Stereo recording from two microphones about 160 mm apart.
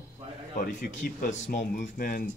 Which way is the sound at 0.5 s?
60° left (ahead or behind).